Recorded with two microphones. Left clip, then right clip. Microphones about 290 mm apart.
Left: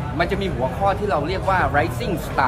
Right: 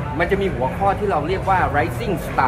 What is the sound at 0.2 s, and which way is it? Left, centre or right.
Speech, centre.